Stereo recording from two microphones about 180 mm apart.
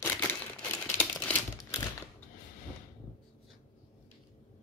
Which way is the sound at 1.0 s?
10° left (ahead or behind).